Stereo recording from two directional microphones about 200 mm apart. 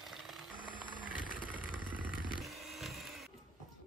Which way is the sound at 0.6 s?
45° left (ahead or behind).